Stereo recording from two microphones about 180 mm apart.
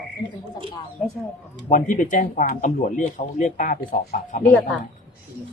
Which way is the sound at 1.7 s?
45° left (ahead or behind).